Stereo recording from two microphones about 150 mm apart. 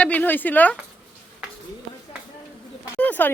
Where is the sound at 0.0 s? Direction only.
10° left (ahead or behind).